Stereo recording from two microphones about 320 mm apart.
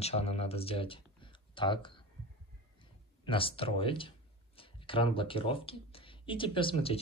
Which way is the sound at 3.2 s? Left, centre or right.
Centre.